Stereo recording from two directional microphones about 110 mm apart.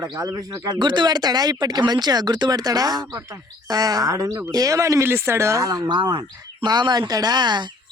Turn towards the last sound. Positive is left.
turn(degrees=-40)  # may be behind; listen again after turning